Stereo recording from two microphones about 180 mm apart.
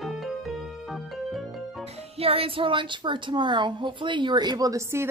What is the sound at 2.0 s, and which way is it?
Speech, 35° right (ahead or behind).